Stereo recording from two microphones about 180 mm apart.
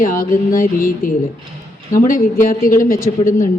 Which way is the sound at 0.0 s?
50° left (ahead or behind).